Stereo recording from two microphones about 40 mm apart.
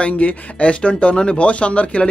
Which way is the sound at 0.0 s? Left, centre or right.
Left.